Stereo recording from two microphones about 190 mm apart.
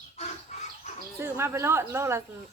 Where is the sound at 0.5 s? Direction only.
35° left (ahead or behind).